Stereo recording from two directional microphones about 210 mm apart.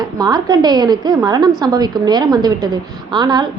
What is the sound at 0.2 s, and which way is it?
A woman's voice, 20° right (ahead or behind).